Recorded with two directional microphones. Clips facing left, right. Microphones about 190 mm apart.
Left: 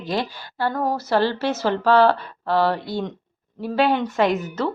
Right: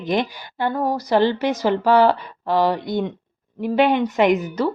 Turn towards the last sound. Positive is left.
turn(degrees=-15)  # may be behind; listen again after turning